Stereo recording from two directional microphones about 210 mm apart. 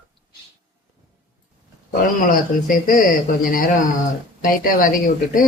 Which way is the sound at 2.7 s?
40° left (ahead or behind).